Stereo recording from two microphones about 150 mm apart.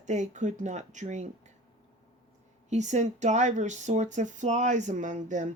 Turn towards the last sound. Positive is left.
turn(degrees=-55)  # may be behind; listen again after turning